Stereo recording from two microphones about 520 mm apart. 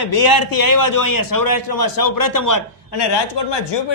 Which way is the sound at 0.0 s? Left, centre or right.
Left.